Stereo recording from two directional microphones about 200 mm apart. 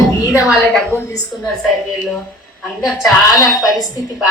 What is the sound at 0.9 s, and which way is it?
Speech, 15° right (ahead or behind).